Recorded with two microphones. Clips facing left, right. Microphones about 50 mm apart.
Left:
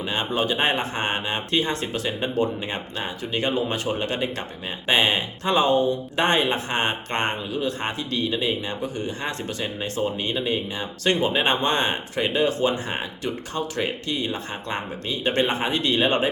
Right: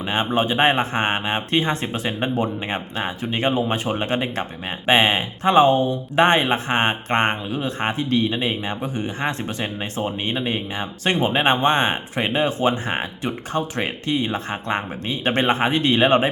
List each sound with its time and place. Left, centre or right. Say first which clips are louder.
0.0 s speech: right 4 dB; right